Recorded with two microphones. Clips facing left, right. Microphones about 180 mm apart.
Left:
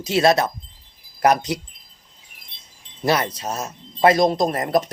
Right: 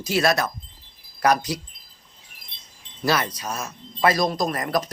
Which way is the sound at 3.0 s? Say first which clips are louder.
Left 3 dB; 25° left (ahead or behind).